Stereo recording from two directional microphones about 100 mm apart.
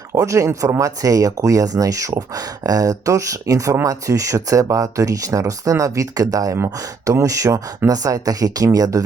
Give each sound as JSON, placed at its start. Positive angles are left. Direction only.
{"t": 0.1, "sound": "speech", "side_deg": -30}